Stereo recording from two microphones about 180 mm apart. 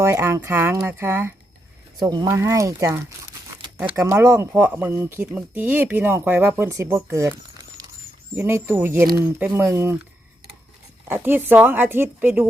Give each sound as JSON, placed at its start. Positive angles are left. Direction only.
{"t": 0.0, "sound": "speech", "side_deg": -15}
{"t": 11.1, "sound": "speech", "side_deg": -10}